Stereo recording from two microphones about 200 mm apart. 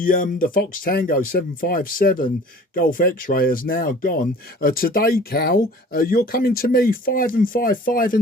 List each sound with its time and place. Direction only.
0.0 s speech: 45° left (ahead or behind)